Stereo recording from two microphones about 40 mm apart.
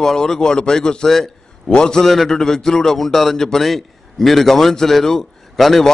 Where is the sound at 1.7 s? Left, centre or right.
Centre.